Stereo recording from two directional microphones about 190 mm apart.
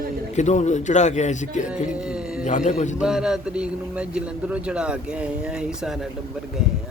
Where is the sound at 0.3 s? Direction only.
40° left (ahead or behind).